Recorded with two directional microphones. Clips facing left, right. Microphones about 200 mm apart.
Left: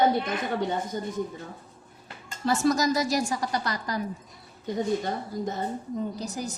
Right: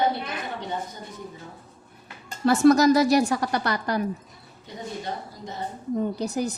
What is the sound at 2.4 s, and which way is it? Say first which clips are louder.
Speech: right 7 dB; 65° right (ahead or behind).